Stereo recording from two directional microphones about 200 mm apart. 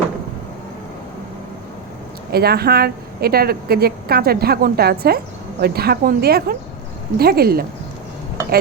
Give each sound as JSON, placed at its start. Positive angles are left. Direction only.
{"t": 2.3, "sound": "a woman's voice", "side_deg": -50}